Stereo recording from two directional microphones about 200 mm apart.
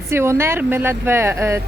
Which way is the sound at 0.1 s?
10° right (ahead or behind).